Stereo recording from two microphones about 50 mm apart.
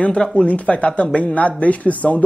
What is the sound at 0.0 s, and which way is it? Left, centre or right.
Speech, left.